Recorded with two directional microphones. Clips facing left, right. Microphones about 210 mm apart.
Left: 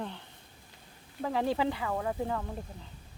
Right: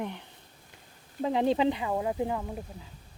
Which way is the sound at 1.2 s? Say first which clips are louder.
Right 4 dB; 20° right (ahead or behind).